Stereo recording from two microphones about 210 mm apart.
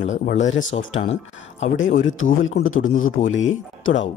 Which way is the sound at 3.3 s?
65° left (ahead or behind).